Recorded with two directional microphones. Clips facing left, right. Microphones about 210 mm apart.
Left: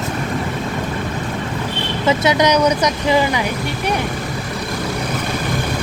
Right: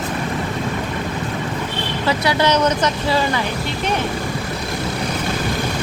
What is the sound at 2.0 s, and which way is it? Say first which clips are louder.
Speech: left 3 dB; 20° left (ahead or behind).